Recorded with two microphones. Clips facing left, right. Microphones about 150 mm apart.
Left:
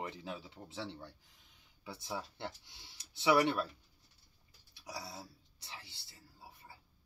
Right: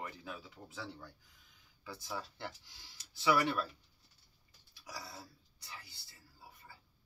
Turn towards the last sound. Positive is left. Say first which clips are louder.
# left 1 dB
turn(degrees=25)  # may be behind; listen again after turning